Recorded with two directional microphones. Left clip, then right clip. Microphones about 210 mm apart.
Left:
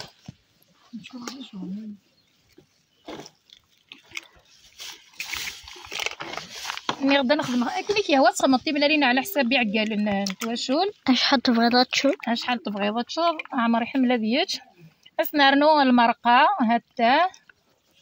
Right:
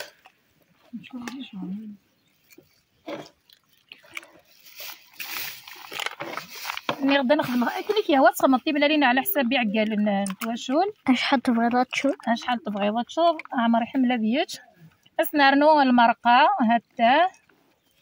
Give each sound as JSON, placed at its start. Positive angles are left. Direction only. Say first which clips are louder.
{"t": 3.1, "sound": "a sound", "louder": "right 3 dB", "side_deg": -55}
{"t": 4.7, "sound": "splash", "louder": "left 2 dB", "side_deg": -50}
{"t": 6.1, "sound": "a sound", "louder": "even", "side_deg": -55}
{"t": 7.2, "sound": "speech", "louder": "right 3 dB", "side_deg": 15}
{"t": 11.1, "sound": "speech", "louder": "left 2 dB", "side_deg": -5}
{"t": 12.3, "sound": "speech", "louder": "right 1 dB", "side_deg": 15}